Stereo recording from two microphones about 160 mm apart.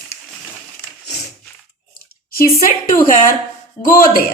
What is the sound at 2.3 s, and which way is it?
A woman's voice, 65° left (ahead or behind).